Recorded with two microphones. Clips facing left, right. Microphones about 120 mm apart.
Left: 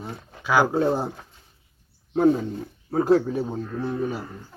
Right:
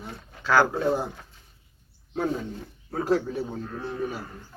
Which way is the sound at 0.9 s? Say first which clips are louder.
Left 2 dB; 30° left (ahead or behind).